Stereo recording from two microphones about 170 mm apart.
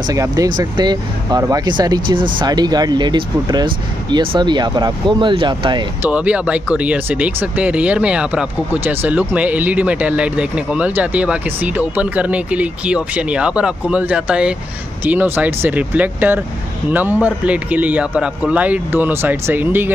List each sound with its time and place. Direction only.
0.1 s speech: 20° right (ahead or behind)
6.0 s speech: 10° right (ahead or behind)